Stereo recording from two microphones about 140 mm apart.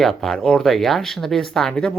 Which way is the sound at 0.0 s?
Centre (ahead or behind).